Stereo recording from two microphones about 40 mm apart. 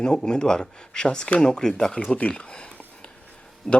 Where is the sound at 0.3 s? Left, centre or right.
Centre.